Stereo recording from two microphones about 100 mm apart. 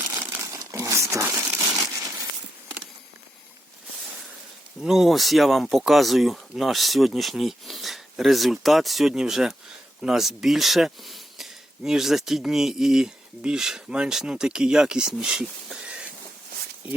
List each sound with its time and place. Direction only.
0.0 s crumpling: 30° right (ahead or behind)
4.8 s speech: 5° right (ahead or behind)